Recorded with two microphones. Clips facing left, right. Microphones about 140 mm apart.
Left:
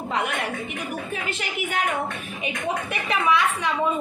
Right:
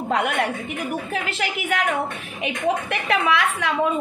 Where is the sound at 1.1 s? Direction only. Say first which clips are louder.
Right 4 dB; 85° right.